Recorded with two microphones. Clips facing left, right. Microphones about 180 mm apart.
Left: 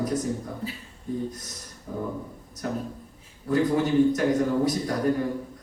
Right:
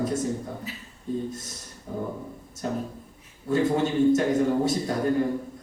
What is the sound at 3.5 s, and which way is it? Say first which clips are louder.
Speech: left 1 dB; 25° right (ahead or behind).